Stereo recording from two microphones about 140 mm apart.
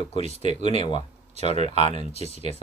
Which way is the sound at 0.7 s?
40° left (ahead or behind).